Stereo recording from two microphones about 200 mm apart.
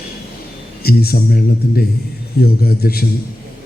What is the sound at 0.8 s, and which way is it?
Speech, 50° left (ahead or behind).